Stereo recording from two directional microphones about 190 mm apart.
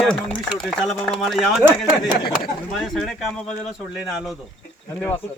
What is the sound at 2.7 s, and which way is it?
Speech, centre (ahead or behind).